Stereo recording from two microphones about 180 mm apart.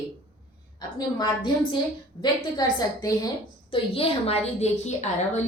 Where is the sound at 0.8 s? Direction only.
20° left (ahead or behind).